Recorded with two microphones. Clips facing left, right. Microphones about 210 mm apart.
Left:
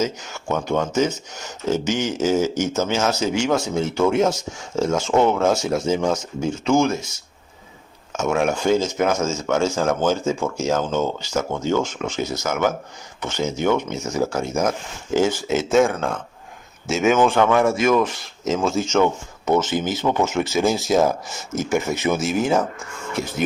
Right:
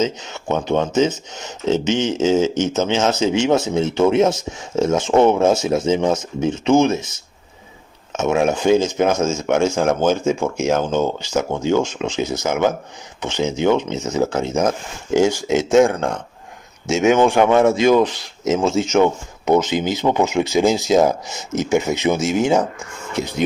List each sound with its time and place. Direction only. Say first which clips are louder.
0.0 s speech: right 3 dB; 20° right (ahead or behind)
8.1 s speech: right 3 dB; 20° right (ahead or behind)